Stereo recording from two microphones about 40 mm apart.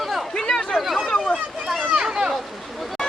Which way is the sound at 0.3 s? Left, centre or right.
Centre.